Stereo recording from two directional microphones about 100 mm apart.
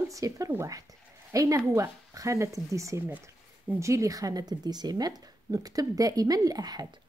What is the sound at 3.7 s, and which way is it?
Speech, 30° right (ahead or behind).